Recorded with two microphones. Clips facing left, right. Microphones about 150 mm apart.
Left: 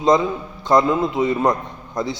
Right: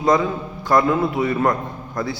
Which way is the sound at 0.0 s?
20° left (ahead or behind).